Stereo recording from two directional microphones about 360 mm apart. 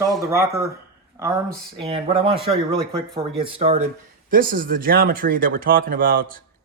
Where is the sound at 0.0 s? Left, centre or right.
Centre.